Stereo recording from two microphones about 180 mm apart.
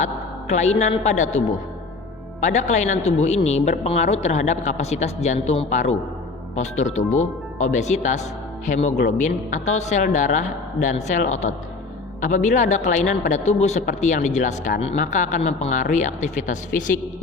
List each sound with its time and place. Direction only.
0.0 s a woman's voice: 40° left (ahead or behind)